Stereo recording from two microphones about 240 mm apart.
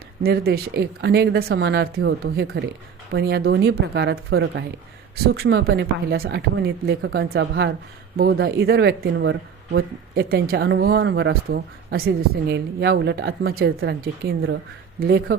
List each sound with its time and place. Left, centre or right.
0.2 s speech: right